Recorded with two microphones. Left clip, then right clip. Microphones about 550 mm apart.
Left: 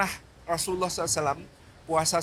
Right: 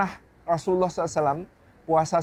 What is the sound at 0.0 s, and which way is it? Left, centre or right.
Speech, right.